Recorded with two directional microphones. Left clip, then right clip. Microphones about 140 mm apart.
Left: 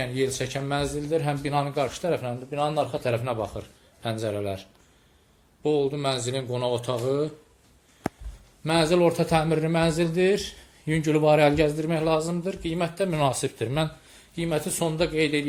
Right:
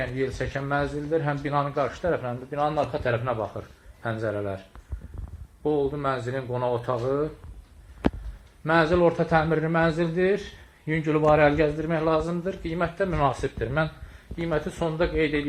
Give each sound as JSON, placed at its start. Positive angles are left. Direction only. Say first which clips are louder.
{"t": 0.0, "sound": "speech", "louder": "left 1 dB", "side_deg": 50}
{"t": 3.6, "sound": "speech", "louder": "even", "side_deg": 40}
{"t": 5.9, "sound": "speech", "louder": "even", "side_deg": 45}
{"t": 8.6, "sound": "speech", "louder": "right 1 dB", "side_deg": 45}
{"t": 10.8, "sound": "speech", "louder": "left 1 dB", "side_deg": 85}
{"t": 11.3, "sound": "speech", "louder": "even", "side_deg": 60}